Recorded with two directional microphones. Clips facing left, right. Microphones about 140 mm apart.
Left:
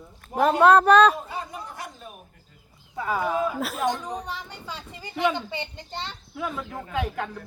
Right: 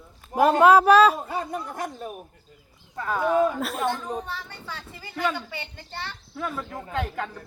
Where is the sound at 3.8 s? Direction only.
15° left (ahead or behind).